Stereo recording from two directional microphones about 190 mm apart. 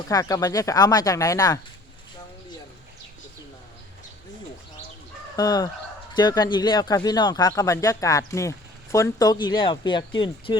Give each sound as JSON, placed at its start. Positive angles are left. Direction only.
{"t": 0.1, "sound": "speech", "side_deg": 20}
{"t": 5.4, "sound": "speech", "side_deg": 20}